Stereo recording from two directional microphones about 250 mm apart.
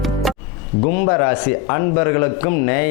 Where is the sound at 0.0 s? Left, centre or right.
Centre.